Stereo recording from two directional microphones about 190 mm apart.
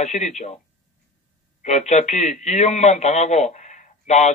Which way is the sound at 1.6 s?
35° left (ahead or behind).